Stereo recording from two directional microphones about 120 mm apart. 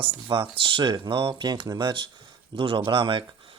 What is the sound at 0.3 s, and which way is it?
Speech, 45° right (ahead or behind).